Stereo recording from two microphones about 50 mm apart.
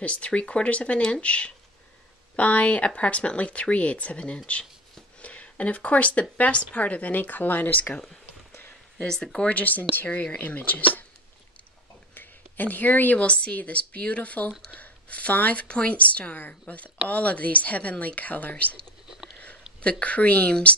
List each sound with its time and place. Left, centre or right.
0.0 s a woman's voice: left
8.9 s speech: centre
9.5 s a woman's voice: left
12.1 s a woman's voice: left
19.0 s a sound: centre
19.8 s speech: left